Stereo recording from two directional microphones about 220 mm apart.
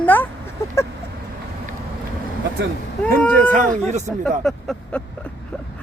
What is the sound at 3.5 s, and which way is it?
Speech, 35° right (ahead or behind).